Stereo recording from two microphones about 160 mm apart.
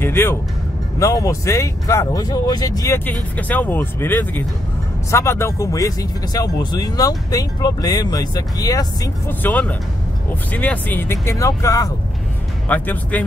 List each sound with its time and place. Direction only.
0.0 s music: 15° left (ahead or behind)
0.9 s speech: 20° left (ahead or behind)
3.3 s speech: 10° left (ahead or behind)
9.4 s speech: 10° left (ahead or behind)
12.6 s speech: 10° left (ahead or behind)